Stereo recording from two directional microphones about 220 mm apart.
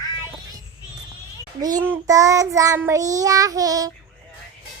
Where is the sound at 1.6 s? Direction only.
15° right (ahead or behind).